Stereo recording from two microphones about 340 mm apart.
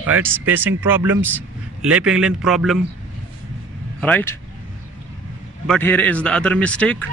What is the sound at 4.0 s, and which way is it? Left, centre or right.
Speech, centre.